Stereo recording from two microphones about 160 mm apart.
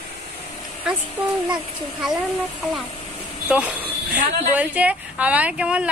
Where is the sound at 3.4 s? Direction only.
10° right (ahead or behind).